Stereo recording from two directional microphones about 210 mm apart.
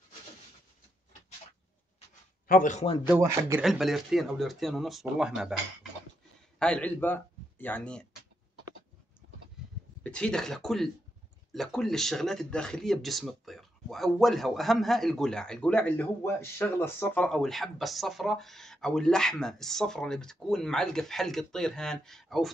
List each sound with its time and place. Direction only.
2.4 s a man's voice: 40° left (ahead or behind)
3.1 s speech: 10° right (ahead or behind)
3.6 s speech: centre (ahead or behind)
6.6 s speech: 5° left (ahead or behind)
10.0 s speech: 5° left (ahead or behind)